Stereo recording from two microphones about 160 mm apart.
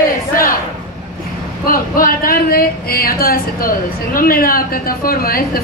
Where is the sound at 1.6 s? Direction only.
60° left (ahead or behind).